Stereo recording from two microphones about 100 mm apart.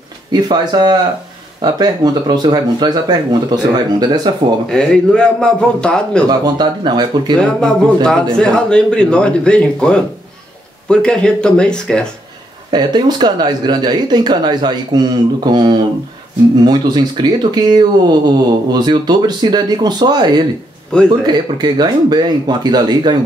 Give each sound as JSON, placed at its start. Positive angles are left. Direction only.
{"t": 0.3, "sound": "speech", "side_deg": -45}
{"t": 4.6, "sound": "a man's voice", "side_deg": 5}
{"t": 6.2, "sound": "speech", "side_deg": -45}
{"t": 7.4, "sound": "a man's voice", "side_deg": 5}
{"t": 12.7, "sound": "speech", "side_deg": -45}
{"t": 20.9, "sound": "a man's voice", "side_deg": 10}
{"t": 21.3, "sound": "speech", "side_deg": -45}